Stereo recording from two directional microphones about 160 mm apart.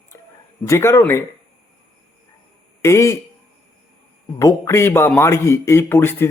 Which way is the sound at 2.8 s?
20° left (ahead or behind).